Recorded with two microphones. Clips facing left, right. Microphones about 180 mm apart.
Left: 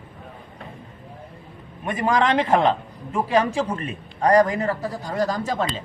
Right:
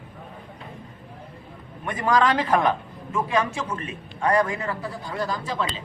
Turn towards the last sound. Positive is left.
turn(degrees=45)  # may be behind; listen again after turning